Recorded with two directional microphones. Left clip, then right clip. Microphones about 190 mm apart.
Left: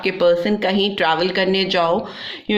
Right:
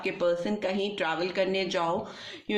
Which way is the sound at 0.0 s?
45° left (ahead or behind).